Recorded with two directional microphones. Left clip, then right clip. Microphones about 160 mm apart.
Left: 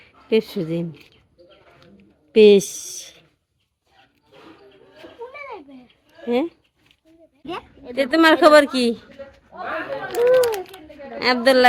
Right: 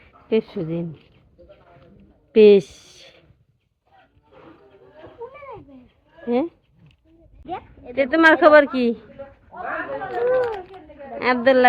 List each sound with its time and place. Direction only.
0.0 s speech: 20° left (ahead or behind)
2.3 s a woman's voice: 10° left (ahead or behind)
6.2 s speech: 15° left (ahead or behind)
7.9 s a woman's voice: 20° left (ahead or behind)
9.5 s speech: 25° right (ahead or behind)
10.2 s a child's voice: 90° left
11.2 s a woman's voice: 25° left (ahead or behind)